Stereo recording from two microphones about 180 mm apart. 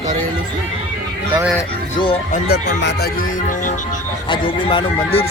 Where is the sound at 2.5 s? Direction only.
70° left (ahead or behind); by 4.0 s 45° left (ahead or behind).